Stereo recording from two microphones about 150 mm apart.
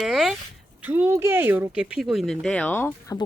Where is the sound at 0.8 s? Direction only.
10° right (ahead or behind); by 2.7 s 5° left (ahead or behind).